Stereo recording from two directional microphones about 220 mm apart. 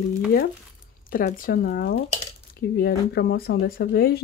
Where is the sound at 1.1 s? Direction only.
40° left (ahead or behind).